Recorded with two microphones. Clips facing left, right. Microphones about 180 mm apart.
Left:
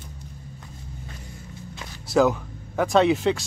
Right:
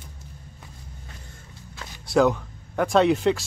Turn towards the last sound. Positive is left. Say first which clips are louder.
# even
turn(degrees=0)  # may be behind; listen again after turning